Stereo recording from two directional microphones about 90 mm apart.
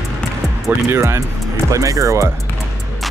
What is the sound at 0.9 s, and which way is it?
Speech, 30° right (ahead or behind).